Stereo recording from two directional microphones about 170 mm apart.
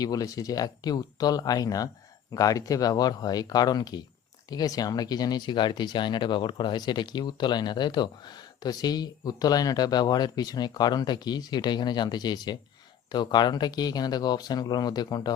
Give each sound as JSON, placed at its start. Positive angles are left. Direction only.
{"t": 0.0, "sound": "speech", "side_deg": 20}